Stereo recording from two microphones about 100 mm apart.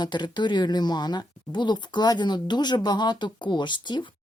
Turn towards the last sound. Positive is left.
turn(degrees=50)  # may be behind; listen again after turning